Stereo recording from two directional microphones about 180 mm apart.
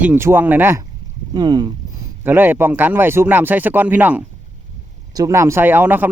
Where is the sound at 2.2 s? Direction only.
10° right (ahead or behind).